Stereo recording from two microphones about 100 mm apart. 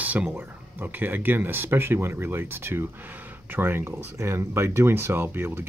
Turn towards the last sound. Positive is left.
turn(degrees=-20)  # may be behind; listen again after turning